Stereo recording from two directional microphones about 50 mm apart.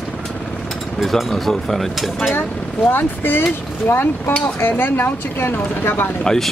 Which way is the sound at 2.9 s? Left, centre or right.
Left.